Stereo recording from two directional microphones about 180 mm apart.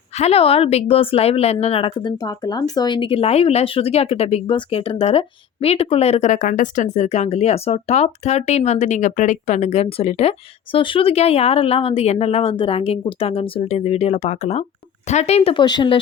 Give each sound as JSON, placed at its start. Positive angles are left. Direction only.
{"t": 0.2, "sound": "a woman's voice", "side_deg": 35}